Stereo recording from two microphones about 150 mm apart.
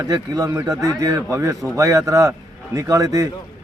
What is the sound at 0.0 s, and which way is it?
A man's voice, 25° right (ahead or behind).